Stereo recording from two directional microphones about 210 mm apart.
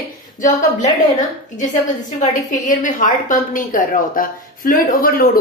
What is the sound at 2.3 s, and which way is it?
A woman's voice, 40° left (ahead or behind).